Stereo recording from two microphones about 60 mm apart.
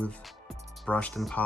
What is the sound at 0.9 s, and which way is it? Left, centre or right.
Speech, left.